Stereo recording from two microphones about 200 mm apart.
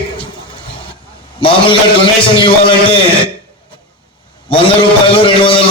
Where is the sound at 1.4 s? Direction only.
25° left (ahead or behind).